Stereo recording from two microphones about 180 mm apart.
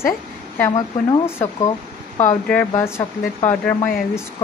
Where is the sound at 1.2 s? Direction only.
15° left (ahead or behind).